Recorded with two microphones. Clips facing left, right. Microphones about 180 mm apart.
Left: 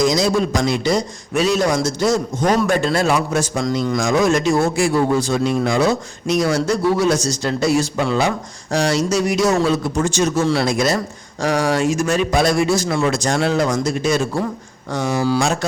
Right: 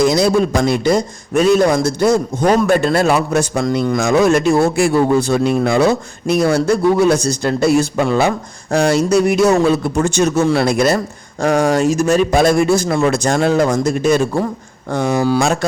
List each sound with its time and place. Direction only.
0.0 s a man's voice: 60° right (ahead or behind)